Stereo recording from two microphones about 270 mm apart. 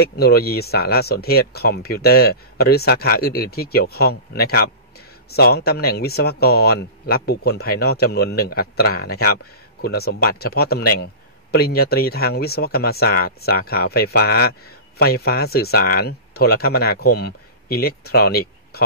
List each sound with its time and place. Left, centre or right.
0.0 s speech: left